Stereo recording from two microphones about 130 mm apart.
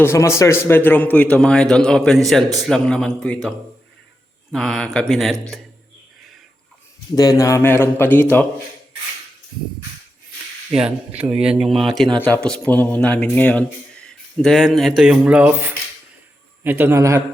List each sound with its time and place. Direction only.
0.0 s a man's voice: 20° left (ahead or behind); by 3.2 s 5° left (ahead or behind)
4.5 s speech: 5° left (ahead or behind)
7.2 s a man's voice: 25° left (ahead or behind)
10.7 s speech: 5° right (ahead or behind)
12.2 s a man's voice: 10° left (ahead or behind); by 17.2 s 20° right (ahead or behind)